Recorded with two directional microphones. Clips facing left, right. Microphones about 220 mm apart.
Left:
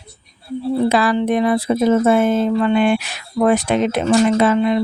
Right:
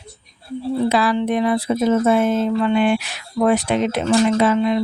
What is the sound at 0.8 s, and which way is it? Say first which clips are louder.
Speech: left 1 dB; 50° left (ahead or behind).